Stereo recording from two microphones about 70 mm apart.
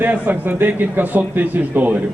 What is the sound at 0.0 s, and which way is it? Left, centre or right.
A man's voice, right.